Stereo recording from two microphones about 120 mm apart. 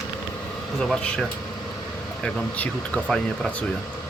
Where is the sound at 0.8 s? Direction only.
5° left (ahead or behind).